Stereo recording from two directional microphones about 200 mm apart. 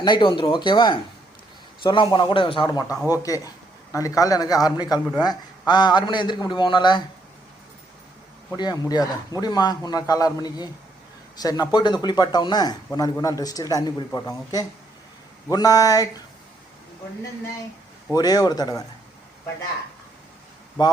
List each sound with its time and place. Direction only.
0.0 s speech: 25° left (ahead or behind)
2.8 s speech: 5° right (ahead or behind)
3.2 s speech: 15° left (ahead or behind)
8.5 s speech: 20° left (ahead or behind)
18.1 s speech: 20° left (ahead or behind)
20.8 s speech: 20° left (ahead or behind)